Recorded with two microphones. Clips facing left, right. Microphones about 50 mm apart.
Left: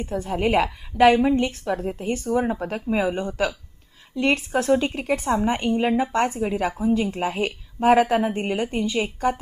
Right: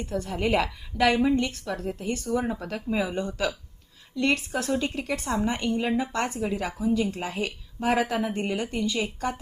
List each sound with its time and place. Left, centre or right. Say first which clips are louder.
0.0 s a woman's voice: left 4 dB; centre